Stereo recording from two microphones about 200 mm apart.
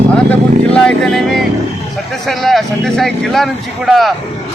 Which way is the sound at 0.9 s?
Centre (ahead or behind).